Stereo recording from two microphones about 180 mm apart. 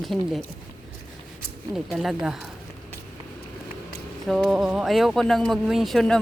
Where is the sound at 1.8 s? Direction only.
Centre (ahead or behind).